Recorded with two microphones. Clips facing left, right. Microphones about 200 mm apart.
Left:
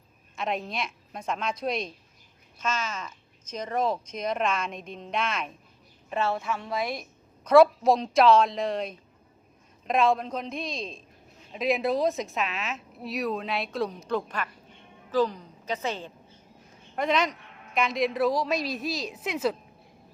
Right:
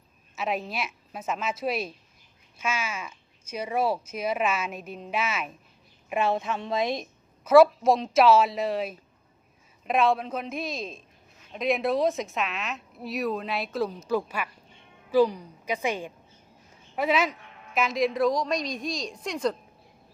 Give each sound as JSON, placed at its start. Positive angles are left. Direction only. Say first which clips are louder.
{"t": 0.3, "sound": "a woman's voice", "louder": "right 1 dB", "side_deg": -5}
{"t": 7.4, "sound": "a woman's voice", "louder": "right 1 dB", "side_deg": 0}